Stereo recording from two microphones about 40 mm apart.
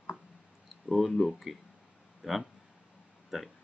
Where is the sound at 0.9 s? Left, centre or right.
Centre.